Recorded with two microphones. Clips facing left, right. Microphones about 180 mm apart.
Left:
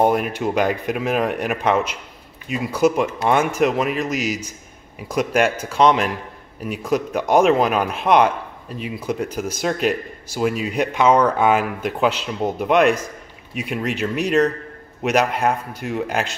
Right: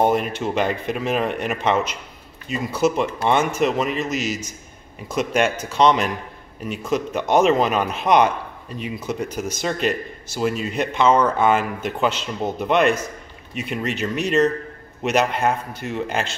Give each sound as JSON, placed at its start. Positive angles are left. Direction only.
{"t": 0.0, "sound": "speech", "side_deg": 10}